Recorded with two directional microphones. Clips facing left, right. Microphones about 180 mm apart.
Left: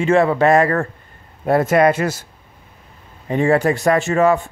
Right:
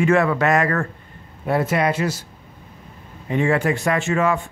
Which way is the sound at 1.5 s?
45° left (ahead or behind).